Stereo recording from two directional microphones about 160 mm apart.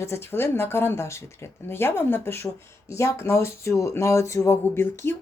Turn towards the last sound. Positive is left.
turn(degrees=15)  # may be behind; listen again after turning